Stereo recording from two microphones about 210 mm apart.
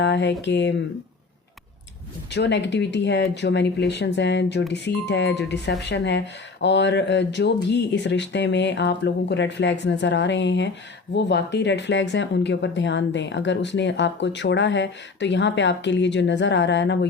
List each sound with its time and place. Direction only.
0.0 s speech: 55° left (ahead or behind)
2.3 s speech: 55° left (ahead or behind)